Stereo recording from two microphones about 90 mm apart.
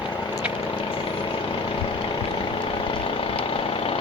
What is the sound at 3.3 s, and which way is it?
Vehicle, 90° left.